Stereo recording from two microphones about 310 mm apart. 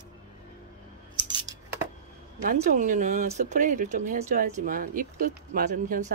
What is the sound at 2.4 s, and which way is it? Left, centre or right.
Speech, right.